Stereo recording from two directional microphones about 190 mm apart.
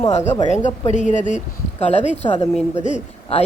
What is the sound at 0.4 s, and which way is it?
A woman's voice, 40° left (ahead or behind).